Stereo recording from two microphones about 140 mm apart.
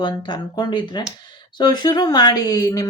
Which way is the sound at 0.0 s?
35° left (ahead or behind).